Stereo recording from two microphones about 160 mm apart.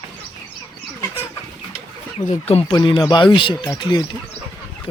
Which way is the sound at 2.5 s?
35° left (ahead or behind).